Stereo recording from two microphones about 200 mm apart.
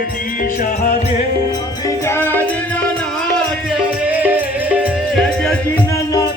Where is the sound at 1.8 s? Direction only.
15° left (ahead or behind).